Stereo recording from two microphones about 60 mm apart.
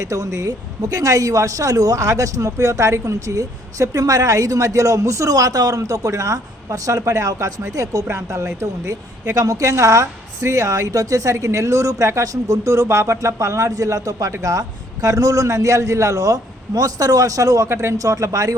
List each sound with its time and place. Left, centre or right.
0.0 s speech: right
17.7 s speech: right